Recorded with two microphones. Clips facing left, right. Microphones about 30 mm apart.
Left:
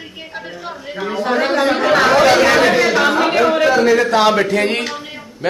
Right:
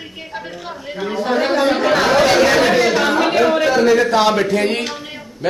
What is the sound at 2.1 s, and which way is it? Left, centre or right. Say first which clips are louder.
Speech: left 1 dB; centre.